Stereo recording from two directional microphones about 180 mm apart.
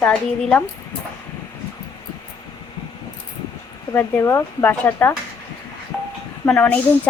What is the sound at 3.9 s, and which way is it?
A woman's voice, 10° left (ahead or behind).